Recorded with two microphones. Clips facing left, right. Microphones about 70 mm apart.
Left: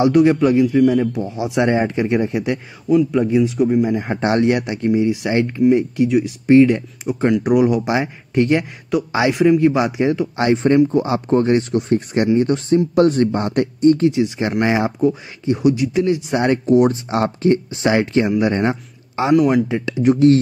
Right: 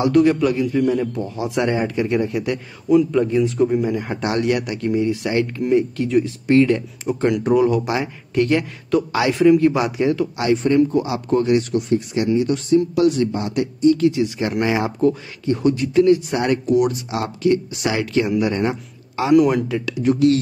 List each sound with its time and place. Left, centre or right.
0.0 s speech: left
0.7 s speech: centre
3.1 s speech: centre
3.9 s speech: left
7.1 s speech: centre
7.4 s speech: centre; by 13.9 s left
13.9 s speech: left
15.0 s a man's voice: centre
19.3 s speech: centre
19.7 s speech: left